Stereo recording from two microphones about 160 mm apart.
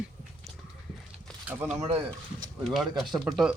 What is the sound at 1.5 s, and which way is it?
Speech, 10° right (ahead or behind).